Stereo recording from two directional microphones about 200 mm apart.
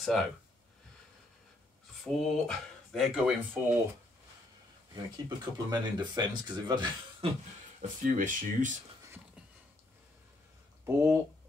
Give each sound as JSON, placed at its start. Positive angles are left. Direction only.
{"t": 0.0, "sound": "speech", "side_deg": 0}
{"t": 2.0, "sound": "speech", "side_deg": 0}
{"t": 4.9, "sound": "speech", "side_deg": -20}
{"t": 8.0, "sound": "speech", "side_deg": -40}